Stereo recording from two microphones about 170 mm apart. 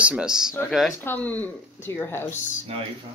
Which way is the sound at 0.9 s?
10° left (ahead or behind).